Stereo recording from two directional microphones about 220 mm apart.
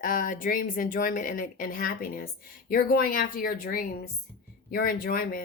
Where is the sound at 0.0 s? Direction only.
40° left (ahead or behind).